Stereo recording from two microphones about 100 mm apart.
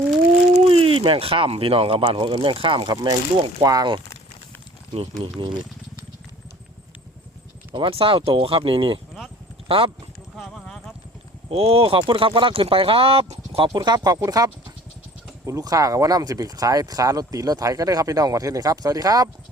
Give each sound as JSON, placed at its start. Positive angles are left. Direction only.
{"t": 0.5, "sound": "speech", "side_deg": -70}
{"t": 2.9, "sound": "speech", "side_deg": -45}
{"t": 4.9, "sound": "speech", "side_deg": -60}
{"t": 7.7, "sound": "speech", "side_deg": -60}
{"t": 10.3, "sound": "clip-clop", "side_deg": 5}
{"t": 11.5, "sound": "speech", "side_deg": -75}
{"t": 13.7, "sound": "speech", "side_deg": -45}